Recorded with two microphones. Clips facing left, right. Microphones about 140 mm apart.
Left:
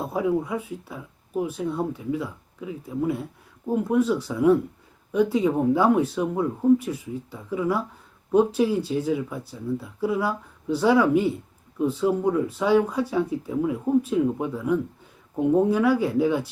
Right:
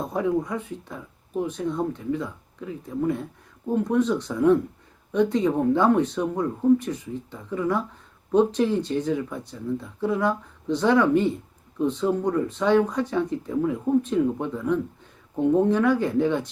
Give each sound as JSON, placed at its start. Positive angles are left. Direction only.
{"t": 0.0, "sound": "speech", "side_deg": 5}